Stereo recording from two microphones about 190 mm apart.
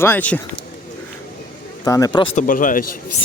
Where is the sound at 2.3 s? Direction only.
45° left (ahead or behind).